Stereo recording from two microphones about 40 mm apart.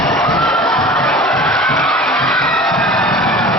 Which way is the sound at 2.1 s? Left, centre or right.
Centre.